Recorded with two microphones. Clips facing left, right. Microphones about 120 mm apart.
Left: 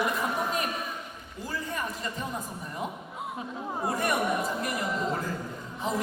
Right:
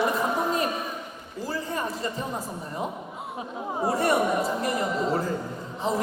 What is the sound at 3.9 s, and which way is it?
Chatter, 30° right (ahead or behind).